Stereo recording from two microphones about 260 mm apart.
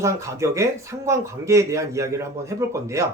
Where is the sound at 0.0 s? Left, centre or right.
Centre.